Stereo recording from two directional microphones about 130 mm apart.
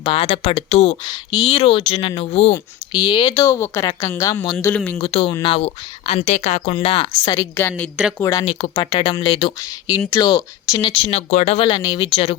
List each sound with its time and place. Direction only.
0.0 s speech: 45° left (ahead or behind)
1.0 s speech: 35° left (ahead or behind)
2.9 s speech: 35° left (ahead or behind)
4.5 s speech: 10° left (ahead or behind)
4.9 s speech: 45° left (ahead or behind)
6.7 s speech: 40° left (ahead or behind)
7.5 s speech: 15° left (ahead or behind)
8.2 s speech: 25° left (ahead or behind)
8.4 s speech: 50° left (ahead or behind)
8.7 s speech: 35° left (ahead or behind)
9.6 s speech: 30° left (ahead or behind); by 11.7 s 50° left (ahead or behind)
11.7 s speech: 30° left (ahead or behind)